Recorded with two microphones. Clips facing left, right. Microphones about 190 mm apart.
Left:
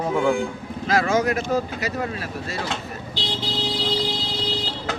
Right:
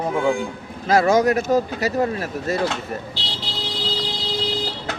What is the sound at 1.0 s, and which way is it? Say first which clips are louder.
Speech: right 5 dB; 35° right (ahead or behind).